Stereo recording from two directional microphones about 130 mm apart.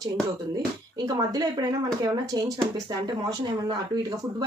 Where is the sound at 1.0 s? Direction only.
30° right (ahead or behind).